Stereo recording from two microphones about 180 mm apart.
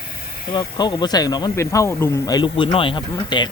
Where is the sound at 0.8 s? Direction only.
25° left (ahead or behind).